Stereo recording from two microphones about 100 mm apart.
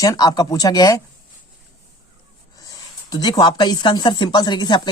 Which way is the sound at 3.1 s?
40° left (ahead or behind).